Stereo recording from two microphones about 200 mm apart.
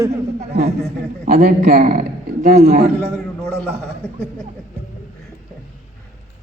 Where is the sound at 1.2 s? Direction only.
45° right (ahead or behind).